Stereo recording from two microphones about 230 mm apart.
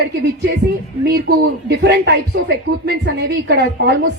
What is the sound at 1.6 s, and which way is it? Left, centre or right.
A woman's voice, right.